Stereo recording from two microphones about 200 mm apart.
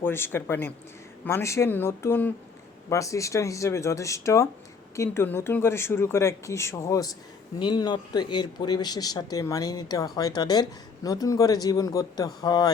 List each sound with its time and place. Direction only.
0.0 s speech: 10° left (ahead or behind)